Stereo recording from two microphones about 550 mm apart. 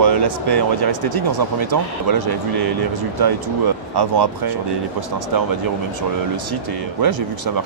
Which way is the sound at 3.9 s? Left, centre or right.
Right.